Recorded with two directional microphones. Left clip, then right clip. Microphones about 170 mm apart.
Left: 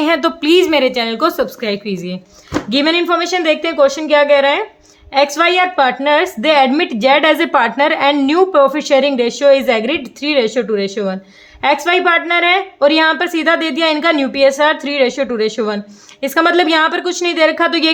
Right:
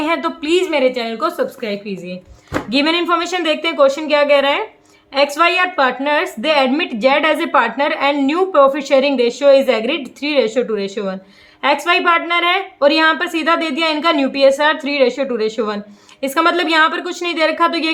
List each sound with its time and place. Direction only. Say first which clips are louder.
0.0 s a woman's voice: left 4 dB; 35° left (ahead or behind)
2.6 s a woman's voice: left 2 dB; 25° left (ahead or behind)